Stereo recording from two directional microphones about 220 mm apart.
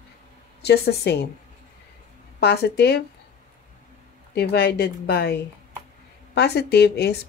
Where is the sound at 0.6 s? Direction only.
50° left (ahead or behind).